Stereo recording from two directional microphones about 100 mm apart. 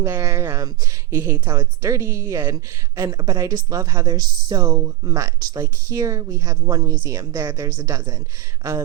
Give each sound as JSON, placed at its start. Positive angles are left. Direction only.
{"t": 0.0, "sound": "speech", "side_deg": -30}